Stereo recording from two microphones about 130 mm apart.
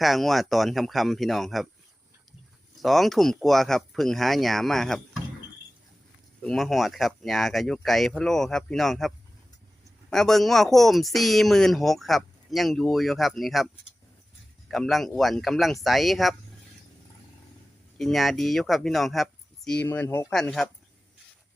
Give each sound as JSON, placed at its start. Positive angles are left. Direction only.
{"t": 0.0, "sound": "speech", "side_deg": 0}
{"t": 2.7, "sound": "speech", "side_deg": 0}
{"t": 6.4, "sound": "speech", "side_deg": 0}
{"t": 14.7, "sound": "speech", "side_deg": 0}
{"t": 17.9, "sound": "speech", "side_deg": 0}
{"t": 20.3, "sound": "speech", "side_deg": 5}